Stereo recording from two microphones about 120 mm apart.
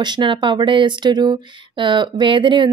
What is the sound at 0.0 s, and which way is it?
Speech, 40° right (ahead or behind).